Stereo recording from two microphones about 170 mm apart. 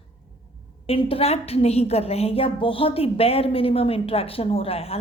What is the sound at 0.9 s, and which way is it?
A woman's voice, 35° left (ahead or behind).